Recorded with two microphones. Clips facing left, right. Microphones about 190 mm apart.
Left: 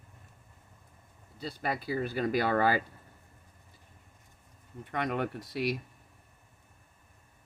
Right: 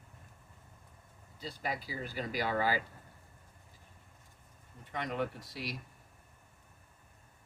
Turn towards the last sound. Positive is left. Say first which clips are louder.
# left 5 dB
turn(degrees=60)  # may be behind; listen again after turning